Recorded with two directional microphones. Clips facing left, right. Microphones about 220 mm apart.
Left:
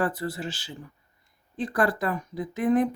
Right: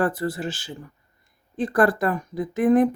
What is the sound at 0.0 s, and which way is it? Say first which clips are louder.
Speech: right 4 dB; 45° right (ahead or behind).